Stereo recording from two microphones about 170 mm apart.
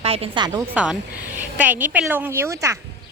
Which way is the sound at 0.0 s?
35° right (ahead or behind).